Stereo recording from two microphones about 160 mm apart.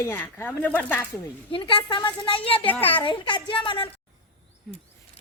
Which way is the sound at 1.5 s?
30° left (ahead or behind).